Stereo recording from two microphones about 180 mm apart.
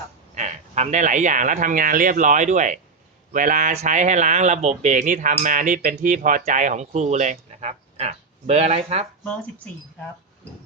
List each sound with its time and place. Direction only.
0.3 s speech: 40° right (ahead or behind)